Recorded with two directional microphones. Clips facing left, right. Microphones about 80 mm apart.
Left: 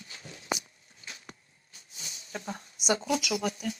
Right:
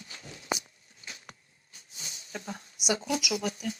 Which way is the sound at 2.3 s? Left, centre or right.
Left.